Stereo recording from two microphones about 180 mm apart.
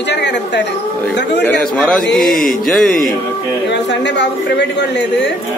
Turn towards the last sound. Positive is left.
turn(degrees=70)  # may be behind; listen again after turning